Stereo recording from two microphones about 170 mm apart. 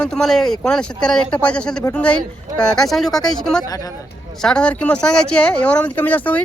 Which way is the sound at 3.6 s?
20° left (ahead or behind).